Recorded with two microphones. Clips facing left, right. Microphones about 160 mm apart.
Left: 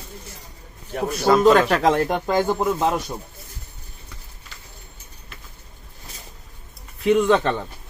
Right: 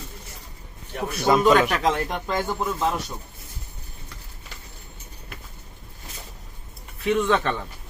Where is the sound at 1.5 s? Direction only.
40° left (ahead or behind).